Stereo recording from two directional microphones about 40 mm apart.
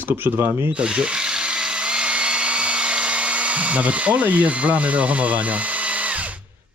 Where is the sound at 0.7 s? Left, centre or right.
Right.